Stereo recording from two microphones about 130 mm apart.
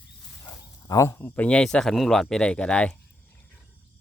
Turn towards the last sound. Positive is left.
turn(degrees=10)  # may be behind; listen again after turning